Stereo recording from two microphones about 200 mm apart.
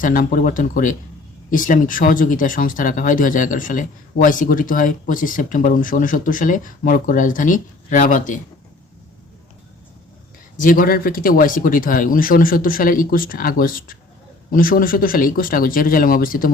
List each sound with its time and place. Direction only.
0.0 s speech: 40° left (ahead or behind)
10.6 s speech: 45° left (ahead or behind)